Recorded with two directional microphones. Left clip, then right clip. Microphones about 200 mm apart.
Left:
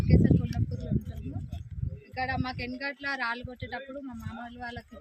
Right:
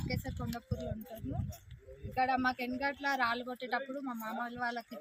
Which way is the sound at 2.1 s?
Centre (ahead or behind).